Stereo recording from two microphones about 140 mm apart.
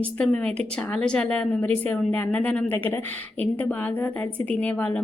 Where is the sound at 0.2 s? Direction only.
5° left (ahead or behind).